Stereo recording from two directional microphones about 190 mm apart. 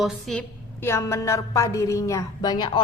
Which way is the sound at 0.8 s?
15° left (ahead or behind).